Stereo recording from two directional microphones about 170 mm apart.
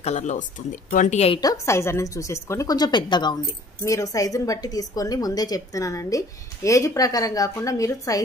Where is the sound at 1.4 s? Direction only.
20° left (ahead or behind).